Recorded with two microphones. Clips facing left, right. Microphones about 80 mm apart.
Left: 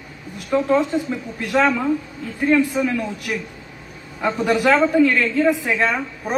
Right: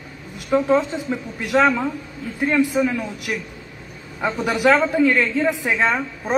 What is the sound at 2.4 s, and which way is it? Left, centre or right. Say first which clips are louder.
A woman's voice: left 1 dB; centre.